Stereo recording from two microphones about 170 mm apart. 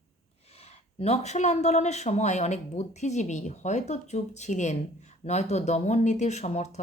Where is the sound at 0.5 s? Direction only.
35° left (ahead or behind).